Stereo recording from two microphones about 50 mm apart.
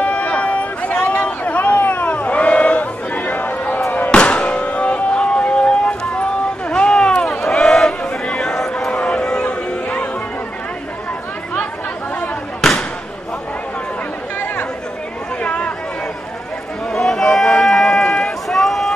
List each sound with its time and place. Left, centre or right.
0.0 s a sound: left
1.8 s chatter: left
4.1 s music: left
15.4 s chatter: left
16.9 s run: centre